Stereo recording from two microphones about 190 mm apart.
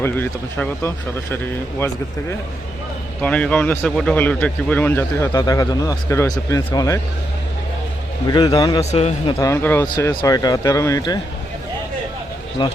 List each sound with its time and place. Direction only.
0.0 s speech: 10° left (ahead or behind)
3.2 s speech: 5° left (ahead or behind)
8.3 s speech: 20° left (ahead or behind)
8.8 s a man's voice: 35° left (ahead or behind)
9.4 s speech: 15° left (ahead or behind)
12.6 s speech: 25° left (ahead or behind)